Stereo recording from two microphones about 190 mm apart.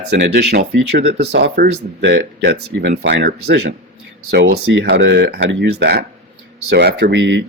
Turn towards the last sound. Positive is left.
turn(degrees=-70)  # may be behind; listen again after turning